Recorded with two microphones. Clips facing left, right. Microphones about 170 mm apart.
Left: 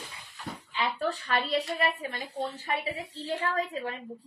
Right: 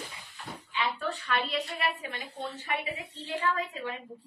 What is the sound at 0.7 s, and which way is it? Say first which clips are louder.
A woman's voice: left 2 dB; 40° left (ahead or behind).